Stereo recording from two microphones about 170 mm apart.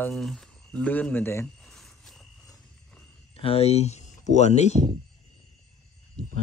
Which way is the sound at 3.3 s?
35° left (ahead or behind).